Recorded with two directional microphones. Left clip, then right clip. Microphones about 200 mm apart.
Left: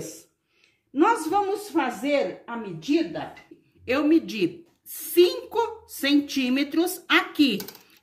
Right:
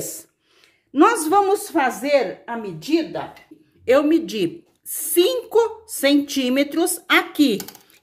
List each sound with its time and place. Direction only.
0.9 s a woman's voice: 50° right (ahead or behind)
3.8 s a woman's voice: 45° right (ahead or behind)